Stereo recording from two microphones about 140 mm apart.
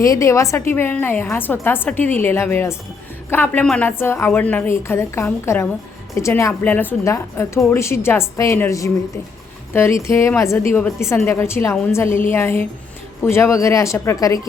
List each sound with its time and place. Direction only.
0.0 s a woman's voice: 20° left (ahead or behind)